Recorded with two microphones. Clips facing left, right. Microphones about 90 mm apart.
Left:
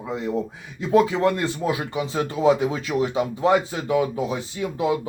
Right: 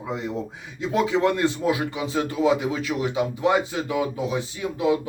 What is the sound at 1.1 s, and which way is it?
Speech, 25° right (ahead or behind).